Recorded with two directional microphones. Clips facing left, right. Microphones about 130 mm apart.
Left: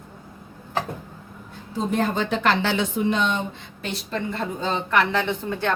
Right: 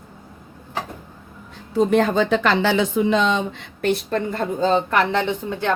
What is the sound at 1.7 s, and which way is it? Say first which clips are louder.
A woman's voice: right 6 dB; 85° right.